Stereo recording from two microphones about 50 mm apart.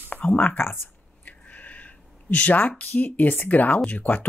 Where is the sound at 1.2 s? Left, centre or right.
Left.